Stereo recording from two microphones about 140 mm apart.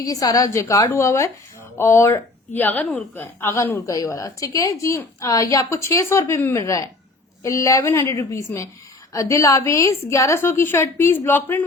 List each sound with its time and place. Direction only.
0.0 s a woman's voice: 25° left (ahead or behind)